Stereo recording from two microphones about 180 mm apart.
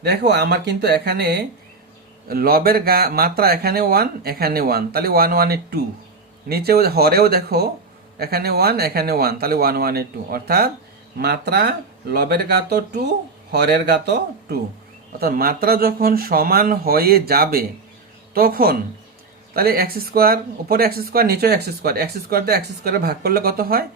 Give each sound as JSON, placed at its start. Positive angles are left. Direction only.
{"t": 0.0, "sound": "speech", "side_deg": -65}